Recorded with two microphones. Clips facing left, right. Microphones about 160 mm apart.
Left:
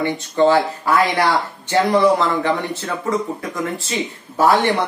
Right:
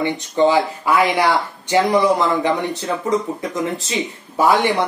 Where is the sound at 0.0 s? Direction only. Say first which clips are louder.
Even; 15° right (ahead or behind).